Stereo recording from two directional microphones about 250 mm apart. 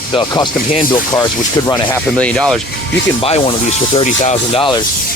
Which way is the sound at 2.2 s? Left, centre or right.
Centre.